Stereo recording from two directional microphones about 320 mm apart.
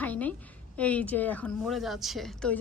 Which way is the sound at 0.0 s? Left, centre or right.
Centre.